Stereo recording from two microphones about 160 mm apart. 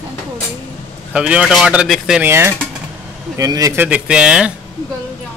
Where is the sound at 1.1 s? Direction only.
5° right (ahead or behind).